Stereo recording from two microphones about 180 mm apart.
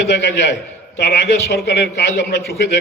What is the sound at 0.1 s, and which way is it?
A man's voice, 75° left (ahead or behind).